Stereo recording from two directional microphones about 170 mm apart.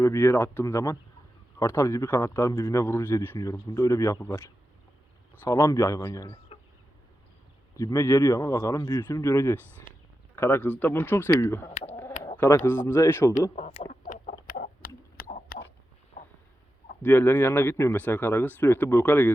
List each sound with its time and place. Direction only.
0.0 s speech: 15° left (ahead or behind)
7.8 s speech: 20° left (ahead or behind)
13.6 s speech: 40° left (ahead or behind)
13.9 s chicken: 55° left (ahead or behind)
17.0 s speech: 10° left (ahead or behind)